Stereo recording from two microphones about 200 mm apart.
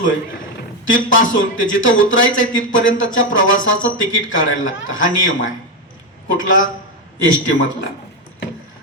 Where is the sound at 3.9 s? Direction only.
40° left (ahead or behind).